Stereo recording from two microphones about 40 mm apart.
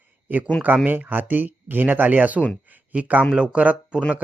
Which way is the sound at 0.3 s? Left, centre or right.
Right.